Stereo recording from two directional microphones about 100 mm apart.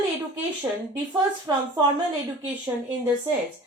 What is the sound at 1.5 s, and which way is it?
Speech, 35° right (ahead or behind).